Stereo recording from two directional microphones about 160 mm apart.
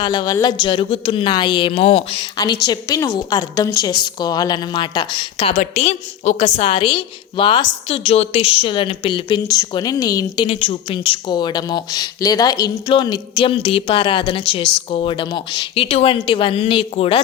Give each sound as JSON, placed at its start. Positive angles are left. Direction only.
{"t": 0.0, "sound": "a woman's voice", "side_deg": 30}
{"t": 2.6, "sound": "a woman's voice", "side_deg": 25}